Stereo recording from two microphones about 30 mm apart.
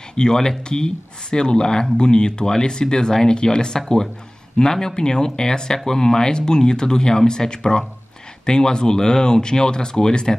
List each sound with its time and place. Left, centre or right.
0.1 s speech: left